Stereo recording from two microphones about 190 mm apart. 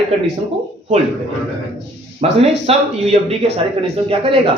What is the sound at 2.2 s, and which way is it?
A man's voice, 35° right (ahead or behind).